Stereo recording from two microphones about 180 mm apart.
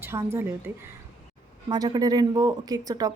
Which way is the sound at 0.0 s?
15° right (ahead or behind).